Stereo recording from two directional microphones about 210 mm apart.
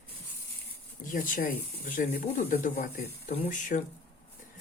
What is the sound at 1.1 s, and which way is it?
Speech, 40° left (ahead or behind).